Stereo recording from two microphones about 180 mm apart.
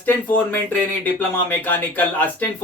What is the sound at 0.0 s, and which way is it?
Speech, 10° left (ahead or behind).